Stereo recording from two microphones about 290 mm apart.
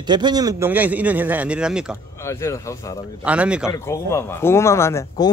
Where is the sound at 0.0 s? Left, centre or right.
Centre.